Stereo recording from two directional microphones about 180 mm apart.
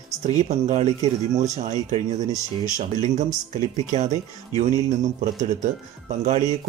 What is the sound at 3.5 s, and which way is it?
Speech, 45° right (ahead or behind).